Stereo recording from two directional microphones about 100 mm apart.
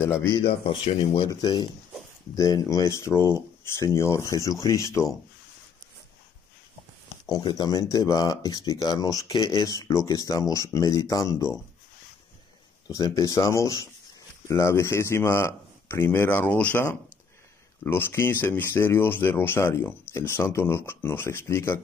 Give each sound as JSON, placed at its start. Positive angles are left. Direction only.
{"t": 0.8, "sound": "speech", "side_deg": 55}
{"t": 1.3, "sound": "speech", "side_deg": 40}
{"t": 7.2, "sound": "speech", "side_deg": 40}
{"t": 12.8, "sound": "speech", "side_deg": 35}
{"t": 17.8, "sound": "speech", "side_deg": 20}